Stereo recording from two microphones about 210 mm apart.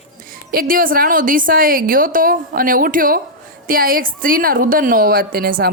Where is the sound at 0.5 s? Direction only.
45° right (ahead or behind).